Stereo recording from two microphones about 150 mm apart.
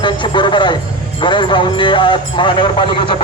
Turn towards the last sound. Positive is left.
turn(degrees=35)  # may be behind; listen again after turning